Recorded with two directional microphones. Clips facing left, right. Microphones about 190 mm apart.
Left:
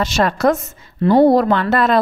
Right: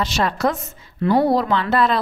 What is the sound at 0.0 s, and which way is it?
Speech, 45° left (ahead or behind).